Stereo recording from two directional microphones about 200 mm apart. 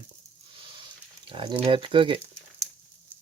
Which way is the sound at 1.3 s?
25° right (ahead or behind).